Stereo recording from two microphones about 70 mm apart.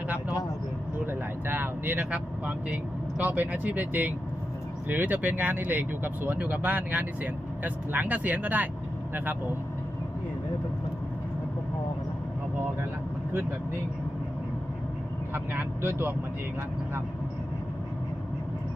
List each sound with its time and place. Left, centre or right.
0.9 s vehicle: right
3.2 s speech: right
15.3 s speech: right